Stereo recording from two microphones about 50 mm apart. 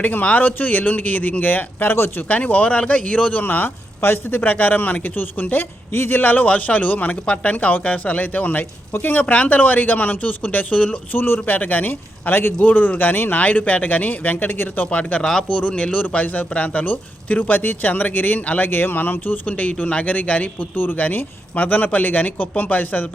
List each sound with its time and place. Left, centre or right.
0.0 s speech: left
2.2 s speech: left
3.4 s speech: left
9.2 s speech: left
11.1 s a man's voice: left
11.4 s speech: left
14.8 s speech: left
15.2 s speech: centre; by 19.5 s left
19.5 s speech: left
20.7 s speech: left